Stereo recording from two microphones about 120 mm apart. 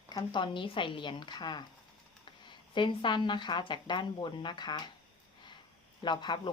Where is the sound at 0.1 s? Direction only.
35° left (ahead or behind).